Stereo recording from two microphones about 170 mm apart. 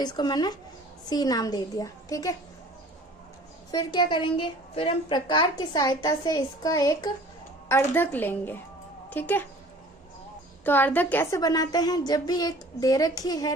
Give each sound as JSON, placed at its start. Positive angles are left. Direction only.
{"t": 0.0, "sound": "a woman's voice", "side_deg": 25}
{"t": 3.7, "sound": "a woman's voice", "side_deg": 25}
{"t": 10.6, "sound": "a woman's voice", "side_deg": 10}